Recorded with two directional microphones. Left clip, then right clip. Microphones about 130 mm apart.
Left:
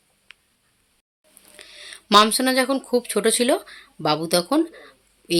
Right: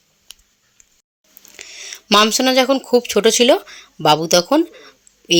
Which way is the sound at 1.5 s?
25° right (ahead or behind).